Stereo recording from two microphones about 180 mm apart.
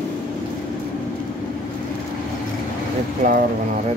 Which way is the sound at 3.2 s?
45° right (ahead or behind).